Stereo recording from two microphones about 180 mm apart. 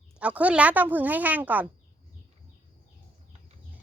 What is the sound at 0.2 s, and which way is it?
Speech, 10° right (ahead or behind).